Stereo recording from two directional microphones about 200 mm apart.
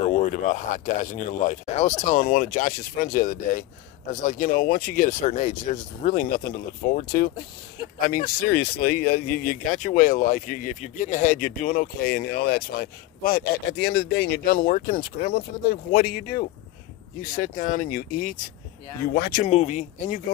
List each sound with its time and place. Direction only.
0.0 s speech: 35° left (ahead or behind)